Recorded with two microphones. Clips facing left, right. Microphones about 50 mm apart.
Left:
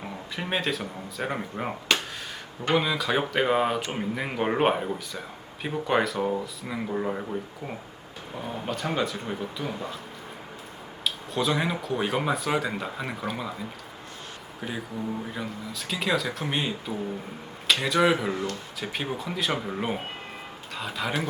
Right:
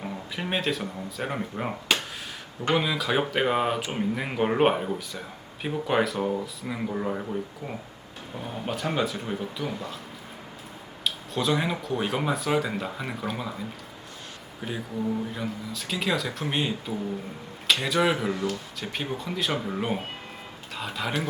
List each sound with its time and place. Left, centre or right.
0.3 s speech: centre
8.6 s speech: centre
11.0 s speech: centre
14.6 s speech: centre